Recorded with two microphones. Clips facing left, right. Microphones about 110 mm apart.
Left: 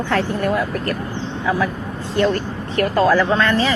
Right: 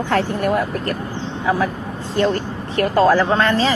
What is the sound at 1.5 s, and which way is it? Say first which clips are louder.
A woman's voice: right 1 dB; 35° right (ahead or behind).